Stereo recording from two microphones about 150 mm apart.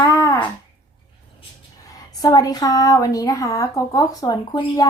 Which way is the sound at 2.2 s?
25° left (ahead or behind).